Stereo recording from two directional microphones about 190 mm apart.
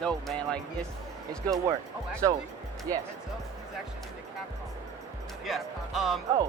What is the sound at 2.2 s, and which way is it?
Speech, 20° right (ahead or behind).